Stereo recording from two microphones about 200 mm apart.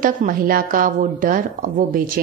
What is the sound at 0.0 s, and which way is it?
Speech, 45° right (ahead or behind).